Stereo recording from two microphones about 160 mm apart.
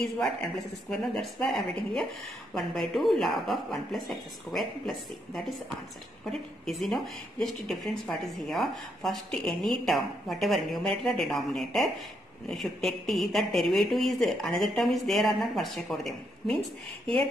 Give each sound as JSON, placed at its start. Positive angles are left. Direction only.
{"t": 0.8, "sound": "a woman's voice", "side_deg": 5}